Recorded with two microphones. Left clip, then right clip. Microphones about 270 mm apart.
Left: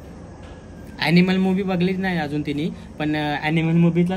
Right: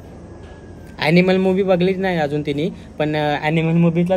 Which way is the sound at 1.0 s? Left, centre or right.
Centre.